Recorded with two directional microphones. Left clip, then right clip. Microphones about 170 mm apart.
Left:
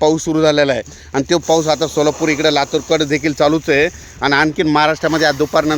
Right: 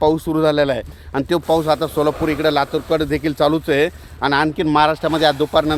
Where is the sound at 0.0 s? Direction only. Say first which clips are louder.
Left 3 dB; 45° left (ahead or behind).